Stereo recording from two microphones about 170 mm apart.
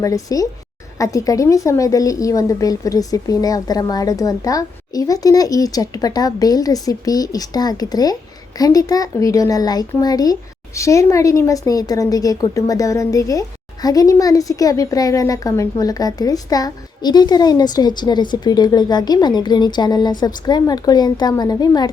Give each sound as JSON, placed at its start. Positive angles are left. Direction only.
{"t": 0.0, "sound": "a woman's voice", "side_deg": 20}